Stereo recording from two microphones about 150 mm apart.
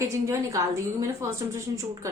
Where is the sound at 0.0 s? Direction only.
20° right (ahead or behind).